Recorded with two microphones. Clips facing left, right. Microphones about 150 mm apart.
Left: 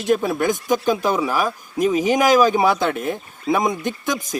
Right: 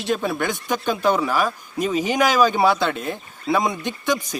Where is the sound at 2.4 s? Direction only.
10° left (ahead or behind).